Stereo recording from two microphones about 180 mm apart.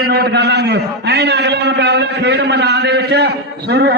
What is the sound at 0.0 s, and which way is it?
A man's voice, 65° right (ahead or behind).